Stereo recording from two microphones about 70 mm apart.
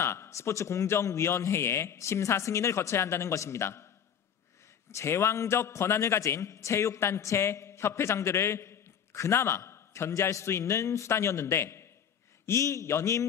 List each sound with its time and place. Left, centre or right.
0.0 s a man's voice: left